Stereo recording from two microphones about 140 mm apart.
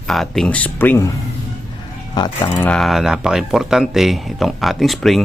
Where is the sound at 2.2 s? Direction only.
25° left (ahead or behind).